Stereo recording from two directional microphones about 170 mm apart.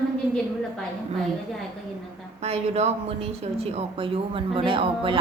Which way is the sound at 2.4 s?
40° right (ahead or behind).